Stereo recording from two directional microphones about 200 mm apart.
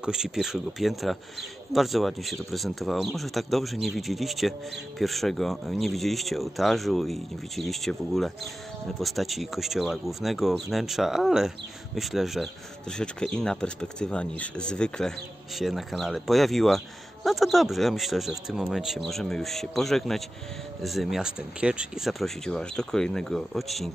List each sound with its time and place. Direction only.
0.0 s speech: 5° right (ahead or behind)